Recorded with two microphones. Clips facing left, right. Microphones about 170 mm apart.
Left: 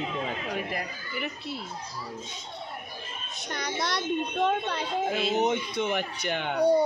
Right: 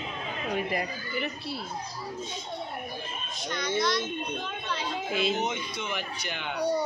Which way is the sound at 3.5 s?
65° left (ahead or behind).